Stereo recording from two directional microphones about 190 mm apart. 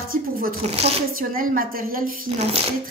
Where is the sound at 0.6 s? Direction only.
30° right (ahead or behind).